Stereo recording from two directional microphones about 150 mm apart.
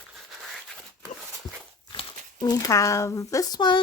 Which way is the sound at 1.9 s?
30° left (ahead or behind).